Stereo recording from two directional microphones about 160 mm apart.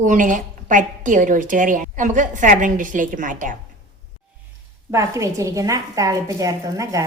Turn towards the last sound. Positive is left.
turn(degrees=-20)  # may be behind; listen again after turning